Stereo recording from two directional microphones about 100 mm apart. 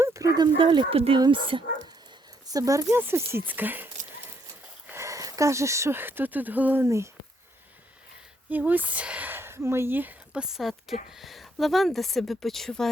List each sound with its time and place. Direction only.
0.0 s a sound: 30° right (ahead or behind)
0.4 s speech: 50° right (ahead or behind); by 1.2 s 70° right (ahead or behind)
1.2 s speech: 55° right (ahead or behind)
2.5 s speech: 35° right (ahead or behind)
2.9 s speech: 25° right (ahead or behind)
4.9 s speech: 30° right (ahead or behind)
6.8 s speech: 30° right (ahead or behind)
8.4 s speech: 15° right (ahead or behind); by 12.9 s 5° left (ahead or behind)